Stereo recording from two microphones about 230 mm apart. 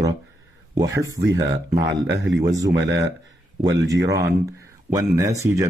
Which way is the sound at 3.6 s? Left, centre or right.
Centre.